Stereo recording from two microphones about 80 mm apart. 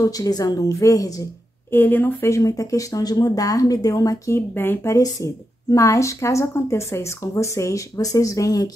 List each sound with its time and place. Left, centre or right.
0.0 s speech: left
1.7 s speech: left
2.3 s speech: left
4.3 s speech: left
4.9 s speech: left